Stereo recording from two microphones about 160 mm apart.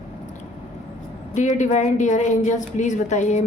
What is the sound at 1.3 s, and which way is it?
A woman's voice, 50° left (ahead or behind).